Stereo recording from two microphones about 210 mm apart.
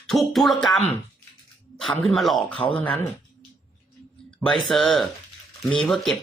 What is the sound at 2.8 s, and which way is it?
Speech, 10° left (ahead or behind).